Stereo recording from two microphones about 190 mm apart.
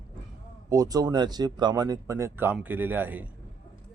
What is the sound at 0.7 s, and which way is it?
A man's voice, 20° right (ahead or behind).